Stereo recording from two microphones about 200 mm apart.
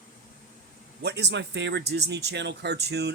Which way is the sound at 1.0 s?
55° right (ahead or behind).